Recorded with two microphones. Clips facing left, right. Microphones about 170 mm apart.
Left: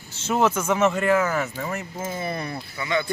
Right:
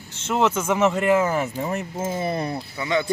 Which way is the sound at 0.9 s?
20° right (ahead or behind).